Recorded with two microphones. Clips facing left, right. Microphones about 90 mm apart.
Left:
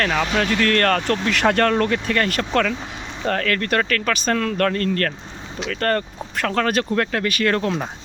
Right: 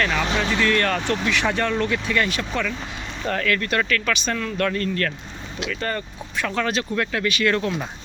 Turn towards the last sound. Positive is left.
turn(degrees=40)  # may be behind; listen again after turning